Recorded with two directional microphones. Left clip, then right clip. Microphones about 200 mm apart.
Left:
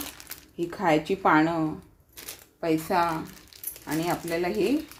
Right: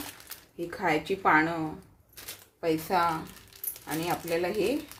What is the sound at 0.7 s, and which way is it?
Speech, 30° left (ahead or behind).